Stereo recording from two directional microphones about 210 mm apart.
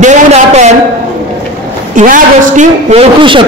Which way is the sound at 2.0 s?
35° right (ahead or behind).